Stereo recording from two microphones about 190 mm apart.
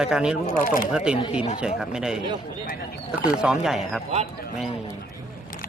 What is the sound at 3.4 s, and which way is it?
Speech, 5° right (ahead or behind).